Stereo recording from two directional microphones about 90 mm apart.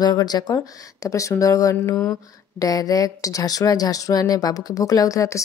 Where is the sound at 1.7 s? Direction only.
30° left (ahead or behind).